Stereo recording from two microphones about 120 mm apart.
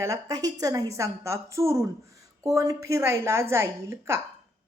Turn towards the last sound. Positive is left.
turn(degrees=-20)  # may be behind; listen again after turning